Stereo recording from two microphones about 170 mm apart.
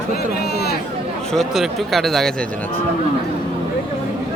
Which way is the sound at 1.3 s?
Centre (ahead or behind).